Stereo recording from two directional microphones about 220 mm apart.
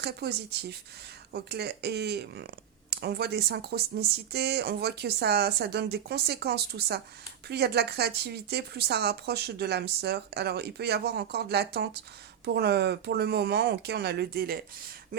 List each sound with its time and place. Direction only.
0.0 s speech: 45° right (ahead or behind)